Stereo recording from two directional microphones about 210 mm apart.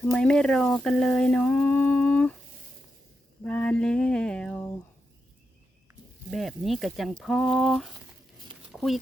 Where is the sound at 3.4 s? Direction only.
5° left (ahead or behind).